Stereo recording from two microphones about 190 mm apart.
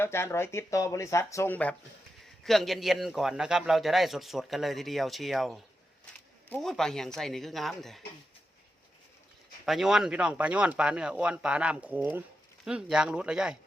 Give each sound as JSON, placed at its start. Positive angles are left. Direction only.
{"t": 0.0, "sound": "a man's voice", "side_deg": 15}
{"t": 9.6, "sound": "a man's voice", "side_deg": 0}